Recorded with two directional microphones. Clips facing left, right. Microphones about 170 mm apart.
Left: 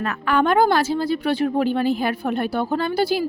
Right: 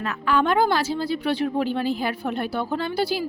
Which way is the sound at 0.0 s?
50° left (ahead or behind).